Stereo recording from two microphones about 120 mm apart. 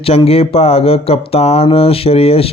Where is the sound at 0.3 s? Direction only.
55° left (ahead or behind).